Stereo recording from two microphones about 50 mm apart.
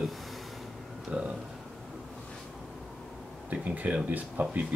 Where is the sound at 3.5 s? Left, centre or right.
Right.